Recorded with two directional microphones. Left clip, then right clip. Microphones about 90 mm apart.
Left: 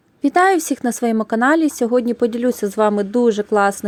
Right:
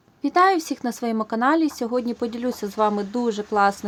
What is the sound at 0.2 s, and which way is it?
Speech, 55° left (ahead or behind).